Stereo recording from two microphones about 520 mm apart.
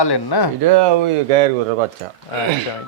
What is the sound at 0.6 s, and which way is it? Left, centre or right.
Speech, right.